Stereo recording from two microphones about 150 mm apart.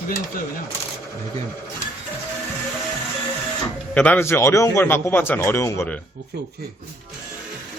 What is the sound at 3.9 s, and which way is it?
A man's voice, 10° left (ahead or behind).